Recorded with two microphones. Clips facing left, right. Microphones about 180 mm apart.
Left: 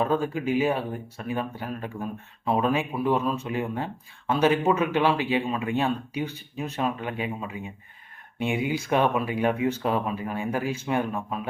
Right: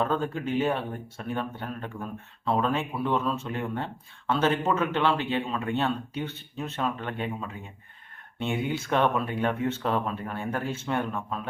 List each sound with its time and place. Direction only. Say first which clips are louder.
0.0 s speech: left 3 dB; 10° left (ahead or behind)
2.0 s speech: left 3 dB; 20° left (ahead or behind)
2.6 s speech: left 3 dB; 10° left (ahead or behind)